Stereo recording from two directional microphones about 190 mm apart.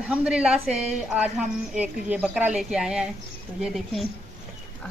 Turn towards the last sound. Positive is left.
turn(degrees=0)  # may be behind; listen again after turning